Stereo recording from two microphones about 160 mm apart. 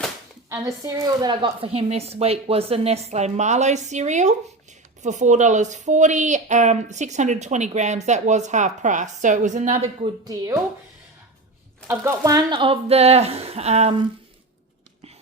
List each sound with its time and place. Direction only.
0.5 s a woman's voice: 20° right (ahead or behind); by 10.1 s 45° right (ahead or behind)
10.2 s speech: 20° right (ahead or behind)
11.9 s speech: 20° right (ahead or behind)
12.5 s a woman's voice: 35° right (ahead or behind)